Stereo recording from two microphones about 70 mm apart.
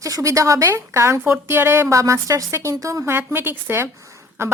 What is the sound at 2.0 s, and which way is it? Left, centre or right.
A woman's voice, right.